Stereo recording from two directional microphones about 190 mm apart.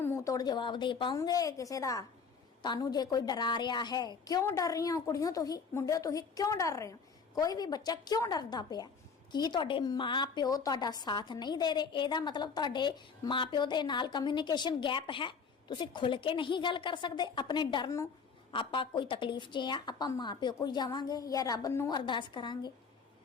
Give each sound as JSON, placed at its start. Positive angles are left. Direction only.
{"t": 0.0, "sound": "a woman's voice", "side_deg": 15}